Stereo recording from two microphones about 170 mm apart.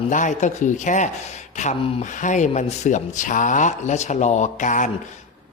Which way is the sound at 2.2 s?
45° left (ahead or behind).